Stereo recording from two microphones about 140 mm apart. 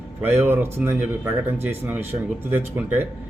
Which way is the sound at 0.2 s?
15° right (ahead or behind).